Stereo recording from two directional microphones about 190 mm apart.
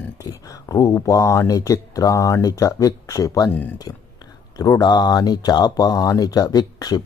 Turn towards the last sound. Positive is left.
turn(degrees=20)  # may be behind; listen again after turning